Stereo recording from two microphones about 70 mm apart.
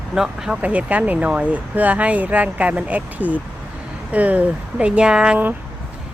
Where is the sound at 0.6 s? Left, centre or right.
Centre.